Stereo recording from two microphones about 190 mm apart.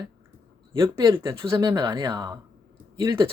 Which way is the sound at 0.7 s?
15° right (ahead or behind).